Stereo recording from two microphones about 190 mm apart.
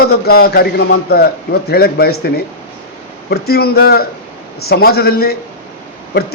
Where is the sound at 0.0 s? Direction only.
55° left (ahead or behind).